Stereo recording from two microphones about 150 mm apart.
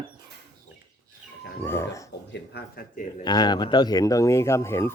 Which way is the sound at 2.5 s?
75° left (ahead or behind).